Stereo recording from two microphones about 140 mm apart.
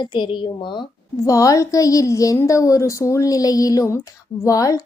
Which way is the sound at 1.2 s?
25° left (ahead or behind).